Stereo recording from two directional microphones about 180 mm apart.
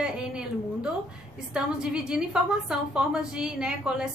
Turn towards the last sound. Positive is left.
turn(degrees=-5)  # may be behind; listen again after turning